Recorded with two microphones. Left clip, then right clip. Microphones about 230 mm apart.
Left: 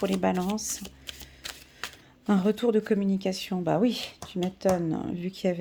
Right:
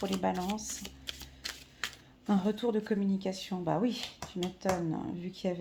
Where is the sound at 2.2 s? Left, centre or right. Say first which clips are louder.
Left 6 dB; left.